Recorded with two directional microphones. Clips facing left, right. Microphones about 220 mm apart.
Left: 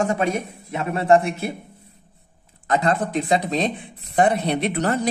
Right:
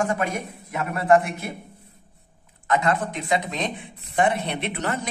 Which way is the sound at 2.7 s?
35° left (ahead or behind).